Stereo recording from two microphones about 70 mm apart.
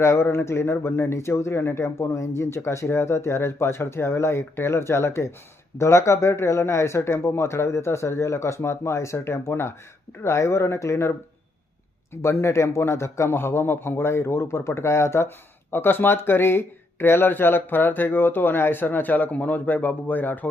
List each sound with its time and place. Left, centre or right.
0.0 s speech: left
12.1 s speech: left